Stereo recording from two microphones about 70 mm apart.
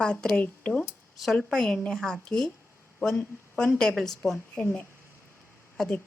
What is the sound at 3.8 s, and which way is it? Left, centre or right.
Speech, centre.